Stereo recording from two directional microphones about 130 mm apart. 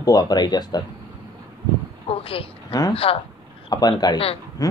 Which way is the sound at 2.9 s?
45° left (ahead or behind).